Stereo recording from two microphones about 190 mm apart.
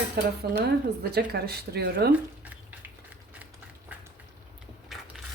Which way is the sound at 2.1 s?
10° right (ahead or behind).